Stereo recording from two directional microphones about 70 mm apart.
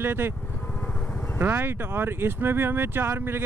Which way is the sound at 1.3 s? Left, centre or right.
Right.